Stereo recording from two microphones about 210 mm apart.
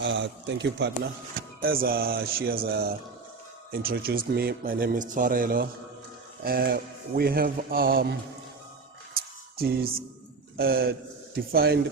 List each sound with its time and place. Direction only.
0.0 s speech: 60° right (ahead or behind)
1.6 s a man's voice: 45° right (ahead or behind)
9.1 s a sound: 45° right (ahead or behind)
10.6 s a man's voice: 45° right (ahead or behind)